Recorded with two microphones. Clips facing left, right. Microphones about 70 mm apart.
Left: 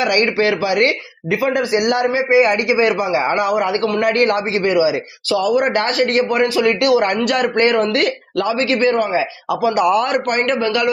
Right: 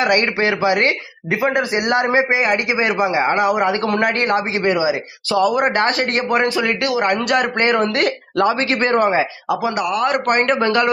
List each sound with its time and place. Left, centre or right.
0.0 s a man's voice: right
6.0 s a man's voice: right
8.4 s a man's voice: right
10.2 s a man's voice: right
10.6 s a man's voice: right